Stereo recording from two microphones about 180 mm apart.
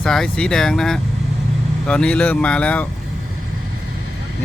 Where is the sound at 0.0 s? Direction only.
5° left (ahead or behind).